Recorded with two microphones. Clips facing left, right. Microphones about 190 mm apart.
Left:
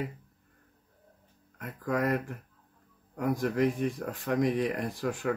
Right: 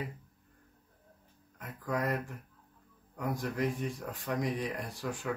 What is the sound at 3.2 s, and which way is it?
Speech, 55° left (ahead or behind).